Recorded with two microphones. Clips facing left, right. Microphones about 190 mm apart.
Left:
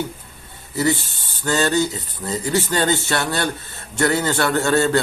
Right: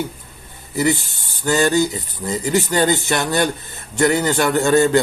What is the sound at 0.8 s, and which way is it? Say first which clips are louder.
A man's voice: right 1 dB; 15° right (ahead or behind).